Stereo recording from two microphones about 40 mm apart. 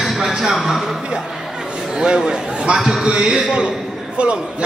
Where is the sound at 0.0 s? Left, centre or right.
Centre.